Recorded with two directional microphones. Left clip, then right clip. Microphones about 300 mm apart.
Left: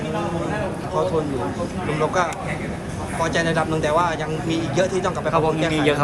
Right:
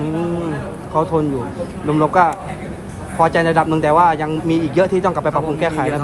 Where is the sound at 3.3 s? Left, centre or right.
Right.